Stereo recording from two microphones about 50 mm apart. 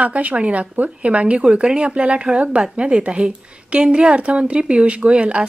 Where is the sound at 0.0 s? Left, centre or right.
Right.